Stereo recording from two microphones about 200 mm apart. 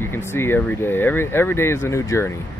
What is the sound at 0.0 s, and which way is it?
Speech, 10° left (ahead or behind).